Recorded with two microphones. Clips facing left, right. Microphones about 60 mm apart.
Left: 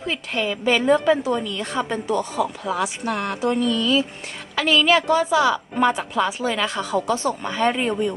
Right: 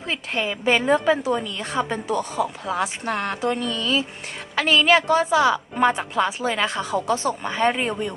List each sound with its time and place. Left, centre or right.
0.1 s a woman's voice: right; by 2.2 s centre
2.3 s a woman's voice: right
2.8 s a woman's voice: right
6.7 s a woman's voice: centre